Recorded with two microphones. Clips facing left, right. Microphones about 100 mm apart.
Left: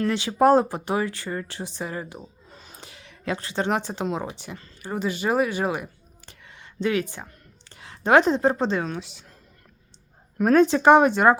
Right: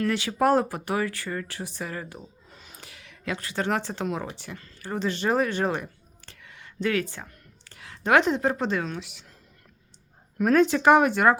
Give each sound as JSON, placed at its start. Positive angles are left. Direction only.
{"t": 0.0, "sound": "speech", "side_deg": 25}
{"t": 2.5, "sound": "speech", "side_deg": 30}
{"t": 4.8, "sound": "speech", "side_deg": 10}
{"t": 6.4, "sound": "a sound", "side_deg": 25}
{"t": 9.0, "sound": "speech", "side_deg": 30}
{"t": 10.3, "sound": "speech", "side_deg": 35}